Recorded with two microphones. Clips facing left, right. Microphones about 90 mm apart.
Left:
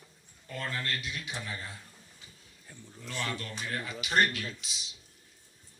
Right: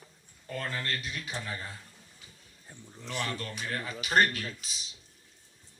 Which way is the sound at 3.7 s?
40° right (ahead or behind).